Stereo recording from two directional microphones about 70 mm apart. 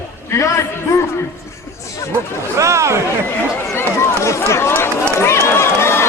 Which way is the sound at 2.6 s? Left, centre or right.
Right.